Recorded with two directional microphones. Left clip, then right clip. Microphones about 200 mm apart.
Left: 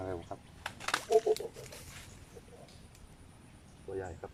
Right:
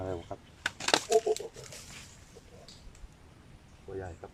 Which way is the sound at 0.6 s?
50° right (ahead or behind).